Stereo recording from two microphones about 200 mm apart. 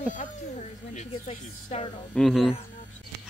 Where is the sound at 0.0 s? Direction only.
40° left (ahead or behind).